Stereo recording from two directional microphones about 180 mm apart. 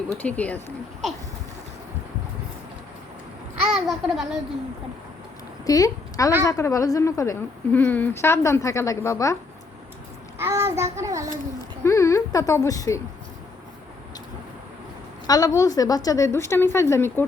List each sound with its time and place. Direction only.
0.1 s a woman's voice: 10° left (ahead or behind)
3.7 s babbling: centre (ahead or behind)
5.6 s a woman's voice: 20° left (ahead or behind)
10.3 s a child's voice: 15° right (ahead or behind)
11.8 s a woman's voice: 15° left (ahead or behind)
15.3 s a woman's voice: 20° left (ahead or behind)